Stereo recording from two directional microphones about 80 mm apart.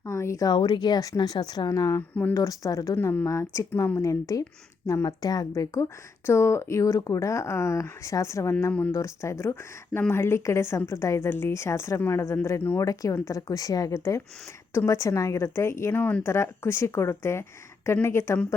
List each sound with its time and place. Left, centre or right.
0.0 s speech: left
0.4 s speech: left
1.7 s speech: left
2.9 s speech: left
12.8 s speech: left
16.0 s speech: left
16.2 s speech: left